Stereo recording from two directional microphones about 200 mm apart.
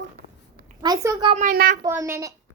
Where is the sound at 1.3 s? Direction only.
40° right (ahead or behind).